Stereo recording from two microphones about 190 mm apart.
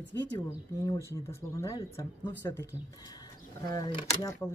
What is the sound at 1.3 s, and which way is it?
Speech, 20° left (ahead or behind).